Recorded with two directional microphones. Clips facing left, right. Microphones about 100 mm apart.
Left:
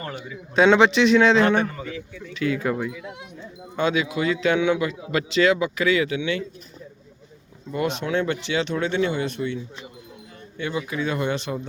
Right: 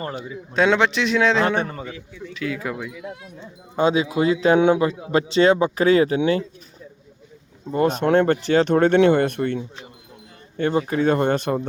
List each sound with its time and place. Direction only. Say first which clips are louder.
0.0 s a man's voice: right 4 dB; 30° right (ahead or behind)
0.5 s a man's voice: left 2 dB; centre (ahead or behind)
3.8 s a man's voice: right 4 dB; 30° right (ahead or behind)
7.7 s speech: right 6 dB; 40° right (ahead or behind)